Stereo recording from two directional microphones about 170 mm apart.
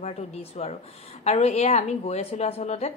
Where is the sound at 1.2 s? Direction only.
40° left (ahead or behind).